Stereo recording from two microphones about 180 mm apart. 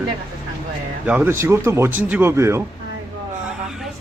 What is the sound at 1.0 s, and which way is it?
A man's voice, 10° right (ahead or behind).